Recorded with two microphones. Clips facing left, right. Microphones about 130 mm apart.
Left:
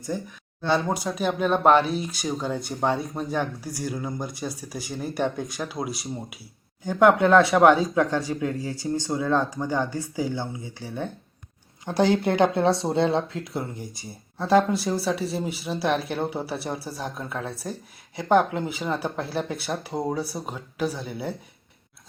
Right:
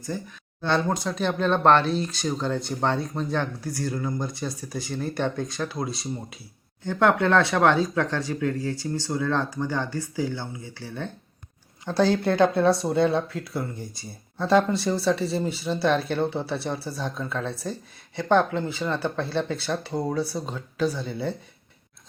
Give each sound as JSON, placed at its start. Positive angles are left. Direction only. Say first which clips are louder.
{"t": 0.7, "sound": "speech", "louder": "even", "side_deg": 5}
{"t": 14.3, "sound": "speech", "louder": "left 1 dB", "side_deg": 5}